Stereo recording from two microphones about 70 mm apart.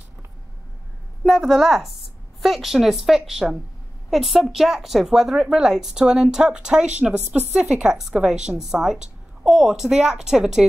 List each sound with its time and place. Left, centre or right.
1.2 s a woman's voice: centre
7.2 s speech: right
7.5 s a woman's voice: centre